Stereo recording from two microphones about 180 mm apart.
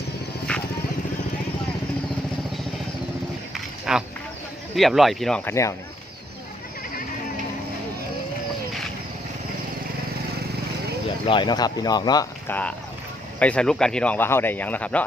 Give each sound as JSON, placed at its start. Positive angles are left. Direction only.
{"t": 3.5, "sound": "a sound", "side_deg": -5}
{"t": 4.7, "sound": "speech", "side_deg": 0}
{"t": 5.5, "sound": "speech", "side_deg": 15}
{"t": 11.3, "sound": "speech", "side_deg": 25}
{"t": 12.5, "sound": "speech", "side_deg": 10}